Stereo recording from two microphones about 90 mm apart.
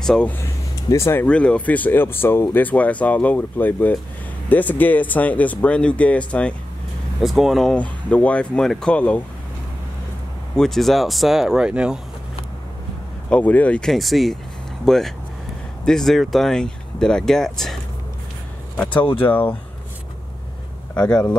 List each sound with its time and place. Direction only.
0.0 s speech: 5° left (ahead or behind)
0.9 s speech: 30° left (ahead or behind)
1.2 s speech: 10° left (ahead or behind)
7.2 s speech: centre (ahead or behind)
7.7 s speech: 15° left (ahead or behind)
10.5 s speech: 5° left (ahead or behind)
13.3 s speech: 15° left (ahead or behind)
13.8 s speech: centre (ahead or behind)
18.8 s speech: 15° left (ahead or behind)
20.9 s speech: 10° left (ahead or behind)